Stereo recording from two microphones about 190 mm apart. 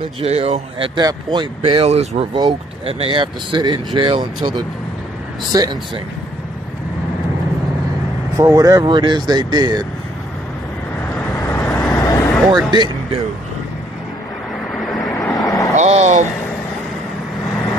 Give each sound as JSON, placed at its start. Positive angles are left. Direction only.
{"t": 0.2, "sound": "speech", "side_deg": -35}
{"t": 8.4, "sound": "speech", "side_deg": -15}
{"t": 11.1, "sound": "vehicle", "side_deg": 15}
{"t": 12.7, "sound": "speech", "side_deg": -25}
{"t": 15.1, "sound": "vehicle", "side_deg": 20}
{"t": 15.7, "sound": "vehicle", "side_deg": -35}